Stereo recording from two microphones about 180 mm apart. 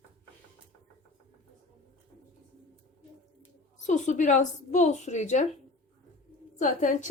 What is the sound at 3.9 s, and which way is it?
A woman's voice, 40° left (ahead or behind).